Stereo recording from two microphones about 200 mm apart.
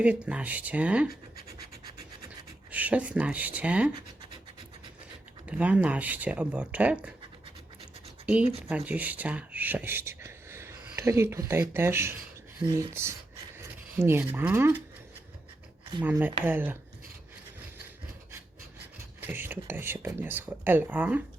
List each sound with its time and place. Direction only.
0.0 s speech: 5° right (ahead or behind)
2.6 s speech: 10° right (ahead or behind)
5.5 s speech: 5° right (ahead or behind)
8.7 s speech: 10° right (ahead or behind)
16.0 s speech: 10° right (ahead or behind)
19.2 s speech: 10° right (ahead or behind)